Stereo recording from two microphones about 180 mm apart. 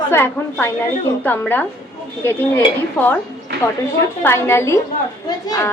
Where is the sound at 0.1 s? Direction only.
15° left (ahead or behind).